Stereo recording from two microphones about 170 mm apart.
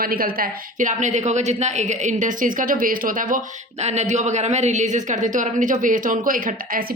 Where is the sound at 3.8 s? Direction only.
40° right (ahead or behind).